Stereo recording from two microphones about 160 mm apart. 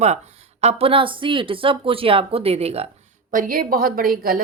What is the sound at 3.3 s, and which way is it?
A woman's voice, 60° right (ahead or behind).